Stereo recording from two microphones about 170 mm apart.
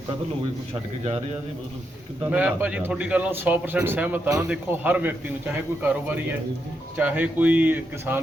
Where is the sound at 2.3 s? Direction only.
10° right (ahead or behind).